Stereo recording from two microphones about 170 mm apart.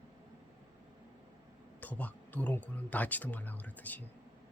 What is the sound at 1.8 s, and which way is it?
Speech, 10° left (ahead or behind).